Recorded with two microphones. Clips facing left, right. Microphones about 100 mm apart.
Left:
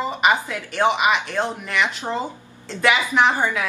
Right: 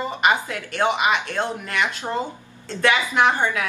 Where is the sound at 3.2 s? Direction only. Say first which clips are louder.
Even; 5° left (ahead or behind).